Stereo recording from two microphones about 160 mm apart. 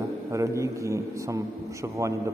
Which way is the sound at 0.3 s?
20° right (ahead or behind).